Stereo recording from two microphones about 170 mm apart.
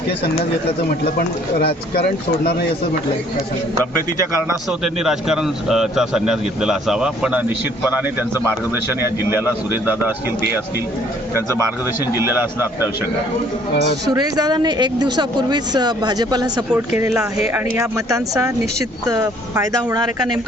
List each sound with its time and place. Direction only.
1.1 s speech: 65° left (ahead or behind)
4.8 s a man's voice: 5° right (ahead or behind)
12.1 s a man's voice: 10° right (ahead or behind)
14.1 s speech: 25° right (ahead or behind)
16.7 s a man's voice: 10° right (ahead or behind)
17.7 s speech: 20° right (ahead or behind)